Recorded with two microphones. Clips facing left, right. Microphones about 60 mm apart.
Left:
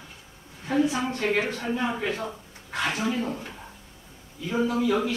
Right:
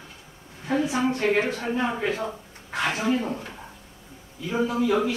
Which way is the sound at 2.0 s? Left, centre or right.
Centre.